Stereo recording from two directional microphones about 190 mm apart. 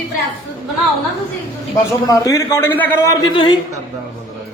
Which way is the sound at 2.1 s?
15° left (ahead or behind).